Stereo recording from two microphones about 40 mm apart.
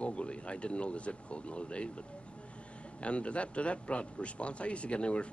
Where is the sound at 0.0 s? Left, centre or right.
Left.